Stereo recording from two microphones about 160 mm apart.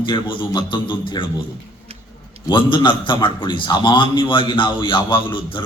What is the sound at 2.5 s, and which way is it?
A man's voice, 30° left (ahead or behind).